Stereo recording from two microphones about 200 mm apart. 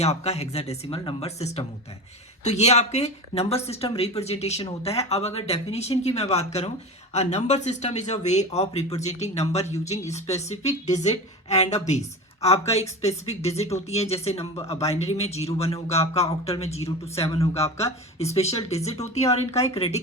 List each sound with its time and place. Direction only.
0.0 s speech: 35° left (ahead or behind)